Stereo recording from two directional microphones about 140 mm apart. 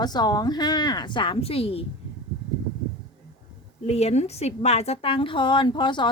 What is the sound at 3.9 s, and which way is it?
A woman's voice, 50° left (ahead or behind).